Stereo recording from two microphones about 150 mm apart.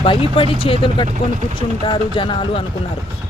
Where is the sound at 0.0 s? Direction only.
35° left (ahead or behind).